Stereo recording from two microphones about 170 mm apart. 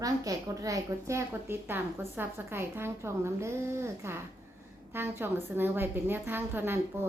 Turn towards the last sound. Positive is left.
turn(degrees=-10)  # may be behind; listen again after turning